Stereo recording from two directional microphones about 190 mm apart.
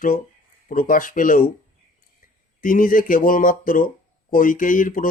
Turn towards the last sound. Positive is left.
turn(degrees=45)  # may be behind; listen again after turning